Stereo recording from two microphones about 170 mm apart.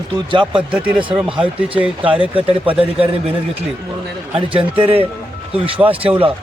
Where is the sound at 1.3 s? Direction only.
30° right (ahead or behind).